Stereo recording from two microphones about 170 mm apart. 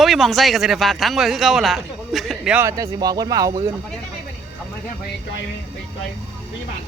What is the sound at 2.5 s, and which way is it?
Speech, 20° right (ahead or behind).